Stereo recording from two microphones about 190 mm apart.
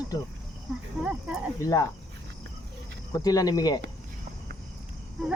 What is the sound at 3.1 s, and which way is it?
Speech, 20° left (ahead or behind).